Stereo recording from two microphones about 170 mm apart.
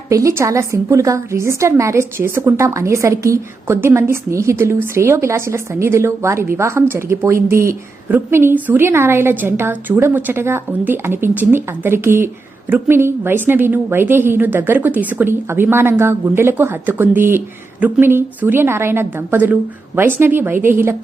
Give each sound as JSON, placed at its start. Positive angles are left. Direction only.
{"t": 0.1, "sound": "a woman's voice", "side_deg": -20}